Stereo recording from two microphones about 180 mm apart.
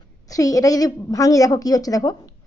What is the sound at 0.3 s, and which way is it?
A woman's voice, 20° left (ahead or behind).